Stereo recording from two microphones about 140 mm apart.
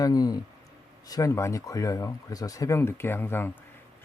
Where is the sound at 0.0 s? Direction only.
25° left (ahead or behind).